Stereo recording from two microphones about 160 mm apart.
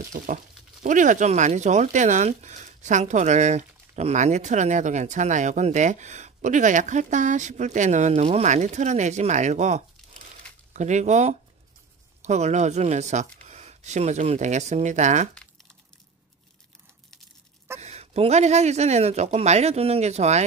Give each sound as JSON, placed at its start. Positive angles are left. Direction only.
{"t": 0.1, "sound": "speech", "side_deg": -55}
{"t": 17.7, "sound": "speech", "side_deg": -40}